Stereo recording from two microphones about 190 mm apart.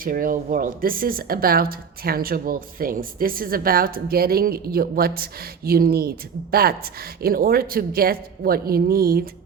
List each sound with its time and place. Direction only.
0.0 s speech: 50° right (ahead or behind)